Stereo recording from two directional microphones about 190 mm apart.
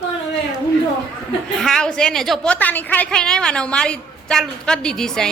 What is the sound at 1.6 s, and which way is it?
A woman's voice, 5° left (ahead or behind).